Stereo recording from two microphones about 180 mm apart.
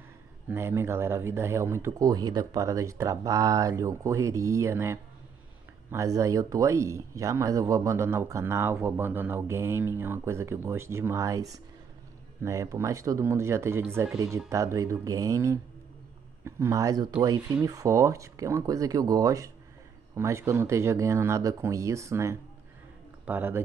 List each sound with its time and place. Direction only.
0.5 s speech: 15° right (ahead or behind)
12.4 s speech: 15° right (ahead or behind)